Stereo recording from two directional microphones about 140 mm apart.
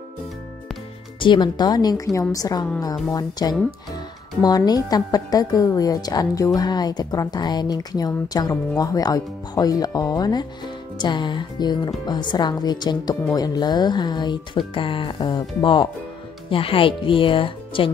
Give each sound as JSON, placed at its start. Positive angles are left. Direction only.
{"t": 1.2, "sound": "a woman's voice", "side_deg": 35}